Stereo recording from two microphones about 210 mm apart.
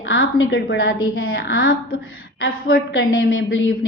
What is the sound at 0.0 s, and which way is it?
A woman's voice, 65° left (ahead or behind).